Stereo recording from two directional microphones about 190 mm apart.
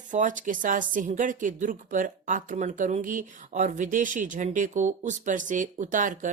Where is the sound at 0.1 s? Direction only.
40° right (ahead or behind).